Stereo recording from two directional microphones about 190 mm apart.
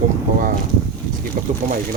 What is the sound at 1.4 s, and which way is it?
Speech, 45° right (ahead or behind).